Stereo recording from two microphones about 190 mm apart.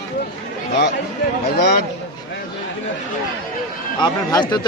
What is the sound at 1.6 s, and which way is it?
Speech, 55° left (ahead or behind).